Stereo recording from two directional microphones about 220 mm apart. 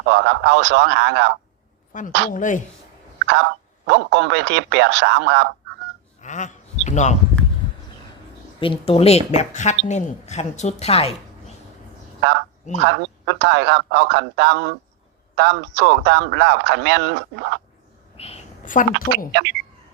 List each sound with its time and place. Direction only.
0.0 s speech: 55° right (ahead or behind)
1.9 s a woman's voice: 35° left (ahead or behind)
3.2 s speech: 55° right (ahead or behind)
6.1 s a sound: 35° left (ahead or behind)
8.6 s a woman's voice: 25° left (ahead or behind)
12.8 s speech: 55° right (ahead or behind)
18.2 s a sound: 30° left (ahead or behind)
19.3 s speech: 55° right (ahead or behind)